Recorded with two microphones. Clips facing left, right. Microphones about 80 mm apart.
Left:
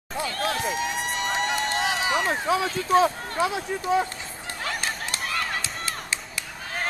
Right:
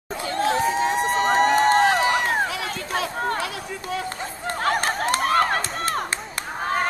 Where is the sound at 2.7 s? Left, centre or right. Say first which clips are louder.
Left 7 dB; right.